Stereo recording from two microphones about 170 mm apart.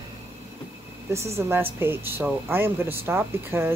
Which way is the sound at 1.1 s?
15° right (ahead or behind).